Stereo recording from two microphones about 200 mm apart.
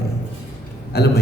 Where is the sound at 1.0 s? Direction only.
55° left (ahead or behind).